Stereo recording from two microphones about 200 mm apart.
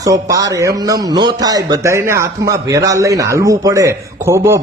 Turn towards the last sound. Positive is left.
turn(degrees=-15)  # may be behind; listen again after turning